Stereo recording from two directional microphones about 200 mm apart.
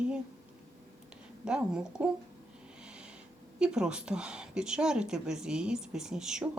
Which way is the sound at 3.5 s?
5° right (ahead or behind).